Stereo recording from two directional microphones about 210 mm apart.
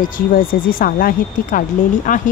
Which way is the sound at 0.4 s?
40° left (ahead or behind).